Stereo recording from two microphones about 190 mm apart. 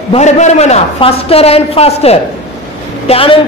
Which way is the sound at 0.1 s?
35° left (ahead or behind).